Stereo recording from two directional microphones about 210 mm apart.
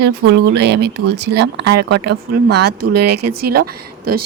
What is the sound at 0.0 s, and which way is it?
Speech, 55° right (ahead or behind).